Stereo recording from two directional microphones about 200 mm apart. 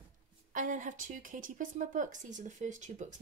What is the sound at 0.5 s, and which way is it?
Speech, 40° right (ahead or behind).